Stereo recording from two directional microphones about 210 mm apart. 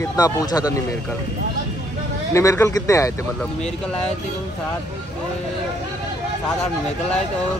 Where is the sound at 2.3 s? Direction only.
15° left (ahead or behind).